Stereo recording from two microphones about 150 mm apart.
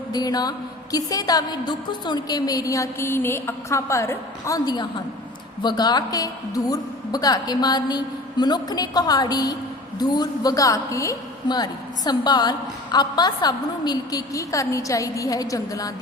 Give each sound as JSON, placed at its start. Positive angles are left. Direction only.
{"t": 0.1, "sound": "a woman's voice", "side_deg": 25}